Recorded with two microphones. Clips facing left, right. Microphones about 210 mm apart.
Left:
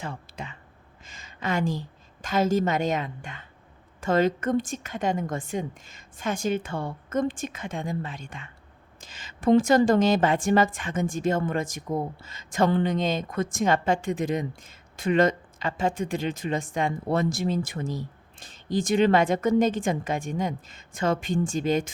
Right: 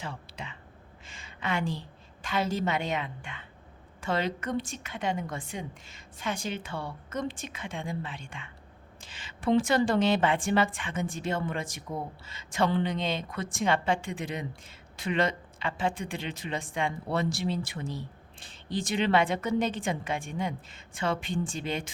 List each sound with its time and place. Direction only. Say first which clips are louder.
0.0 s speech: left 4 dB; 45° left (ahead or behind)
1.0 s a sound: left 4 dB; 40° left (ahead or behind)
2.2 s a woman's voice: left 6 dB; 45° left (ahead or behind)